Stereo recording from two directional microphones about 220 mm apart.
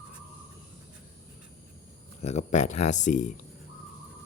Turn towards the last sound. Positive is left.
turn(degrees=35)  # may be behind; listen again after turning